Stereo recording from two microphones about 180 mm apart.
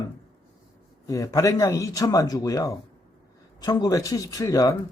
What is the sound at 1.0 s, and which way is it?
Speech, 20° left (ahead or behind).